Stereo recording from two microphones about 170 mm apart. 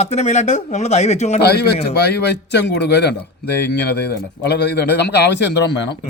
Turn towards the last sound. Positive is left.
turn(degrees=85)